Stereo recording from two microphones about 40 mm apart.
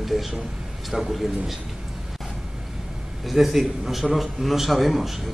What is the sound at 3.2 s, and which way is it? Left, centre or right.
A man's voice, centre.